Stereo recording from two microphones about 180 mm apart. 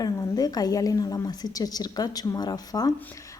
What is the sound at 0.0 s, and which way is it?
A woman's voice, 20° left (ahead or behind).